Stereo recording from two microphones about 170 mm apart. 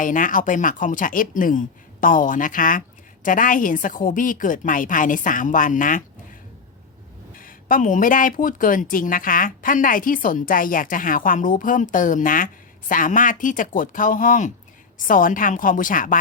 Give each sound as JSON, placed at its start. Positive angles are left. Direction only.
{"t": 0.0, "sound": "speech", "side_deg": 50}
{"t": 7.3, "sound": "speech", "side_deg": 55}